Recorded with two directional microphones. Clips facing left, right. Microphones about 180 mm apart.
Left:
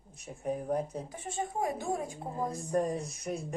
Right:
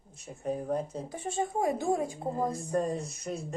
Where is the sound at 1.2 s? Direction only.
25° right (ahead or behind).